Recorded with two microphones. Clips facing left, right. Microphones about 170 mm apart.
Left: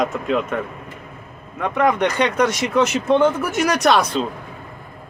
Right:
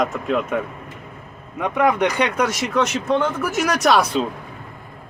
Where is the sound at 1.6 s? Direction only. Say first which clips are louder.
Even; 10° right (ahead or behind).